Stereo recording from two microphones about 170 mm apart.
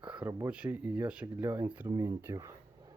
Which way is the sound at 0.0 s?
5° right (ahead or behind).